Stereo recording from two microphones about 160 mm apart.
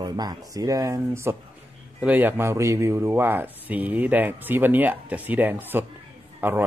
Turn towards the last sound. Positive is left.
turn(degrees=-15)  # may be behind; listen again after turning